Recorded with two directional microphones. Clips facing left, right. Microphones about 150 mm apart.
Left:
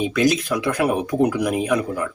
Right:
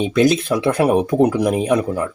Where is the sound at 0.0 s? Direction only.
30° right (ahead or behind).